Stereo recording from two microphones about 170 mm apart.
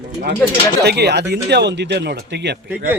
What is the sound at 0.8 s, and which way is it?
A man's voice, 75° right (ahead or behind).